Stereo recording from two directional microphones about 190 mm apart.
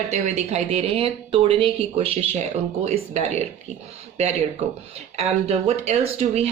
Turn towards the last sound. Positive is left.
turn(degrees=-35)  # may be behind; listen again after turning